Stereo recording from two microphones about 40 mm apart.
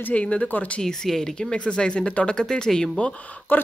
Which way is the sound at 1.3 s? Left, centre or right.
Left.